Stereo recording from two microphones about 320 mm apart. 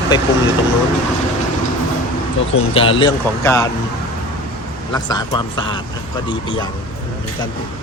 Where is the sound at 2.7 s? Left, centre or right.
Centre.